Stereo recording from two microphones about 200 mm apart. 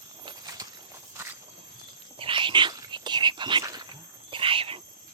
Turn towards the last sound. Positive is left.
turn(degrees=-25)  # may be behind; listen again after turning